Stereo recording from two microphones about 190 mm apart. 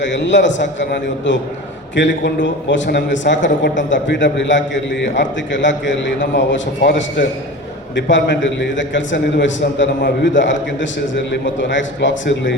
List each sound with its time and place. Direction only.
0.0 s a man's voice: 70° left (ahead or behind)